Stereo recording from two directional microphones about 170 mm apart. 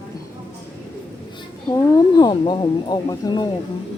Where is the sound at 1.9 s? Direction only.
25° left (ahead or behind).